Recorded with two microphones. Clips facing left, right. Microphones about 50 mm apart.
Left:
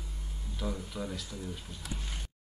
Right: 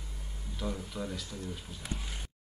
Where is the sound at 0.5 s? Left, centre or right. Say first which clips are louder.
Even; centre.